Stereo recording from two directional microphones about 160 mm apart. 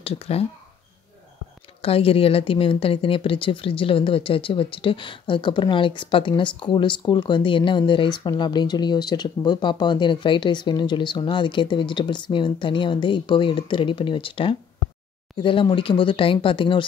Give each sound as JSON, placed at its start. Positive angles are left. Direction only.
{"t": 0.0, "sound": "a woman's voice", "side_deg": 40}
{"t": 1.8, "sound": "a woman's voice", "side_deg": 35}